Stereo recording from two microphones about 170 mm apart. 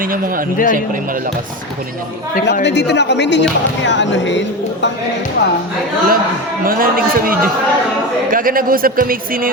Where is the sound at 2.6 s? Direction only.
90° left.